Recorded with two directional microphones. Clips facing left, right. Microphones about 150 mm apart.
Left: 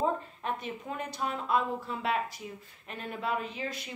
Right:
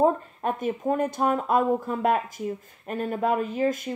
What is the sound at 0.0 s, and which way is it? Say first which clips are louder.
Speech: right 9 dB; 50° right (ahead or behind).